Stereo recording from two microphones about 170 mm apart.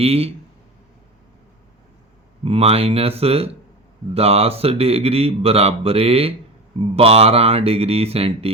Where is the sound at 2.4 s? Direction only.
35° right (ahead or behind).